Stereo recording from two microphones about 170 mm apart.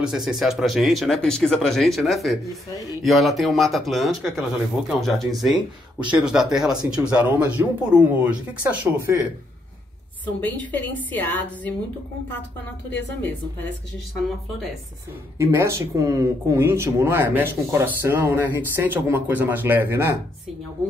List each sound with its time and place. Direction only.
0.0 s speech: 5° right (ahead or behind)
10.2 s a woman's voice: 10° left (ahead or behind)
12.9 s a woman's voice: 10° left (ahead or behind)
15.3 s speech: 15° right (ahead or behind)